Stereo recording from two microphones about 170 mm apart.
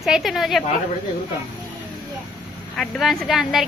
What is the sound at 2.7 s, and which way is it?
Speech, 5° left (ahead or behind).